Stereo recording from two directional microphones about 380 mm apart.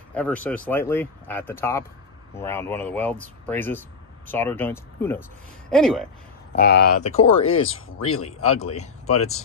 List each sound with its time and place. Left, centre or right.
0.1 s speech: centre
6.5 s speech: left
7.6 s speech: left
8.7 s speech: centre